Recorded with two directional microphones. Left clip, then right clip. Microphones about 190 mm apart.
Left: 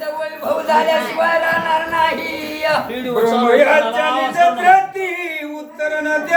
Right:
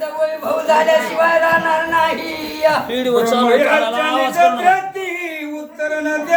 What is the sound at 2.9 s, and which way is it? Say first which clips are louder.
Speech: right 1 dB; 60° right (ahead or behind).